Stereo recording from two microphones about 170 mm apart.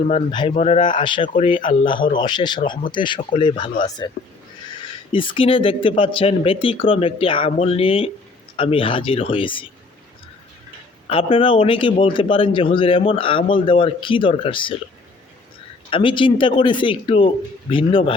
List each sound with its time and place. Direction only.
0.1 s speech: 30° left (ahead or behind)
0.5 s speech: 40° left (ahead or behind)
0.9 s speech: 30° left (ahead or behind)
5.1 s speech: 30° left (ahead or behind)
11.1 s speech: 30° left (ahead or behind)
15.9 s speech: 30° left (ahead or behind)